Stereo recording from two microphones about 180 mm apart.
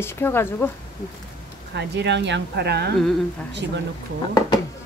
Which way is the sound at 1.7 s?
75° right (ahead or behind).